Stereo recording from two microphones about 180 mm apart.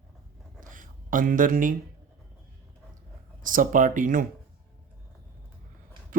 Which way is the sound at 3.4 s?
50° right (ahead or behind).